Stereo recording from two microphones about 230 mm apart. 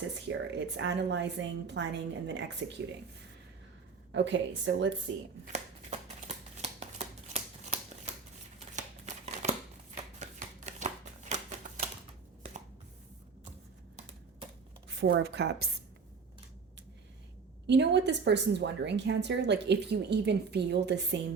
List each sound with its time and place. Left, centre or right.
0.8 s a woman's voice: right
4.1 s a woman's voice: right
5.5 s shuffling cards: right
8.5 s a sound: right
14.8 s speech: right
17.7 s a woman's voice: right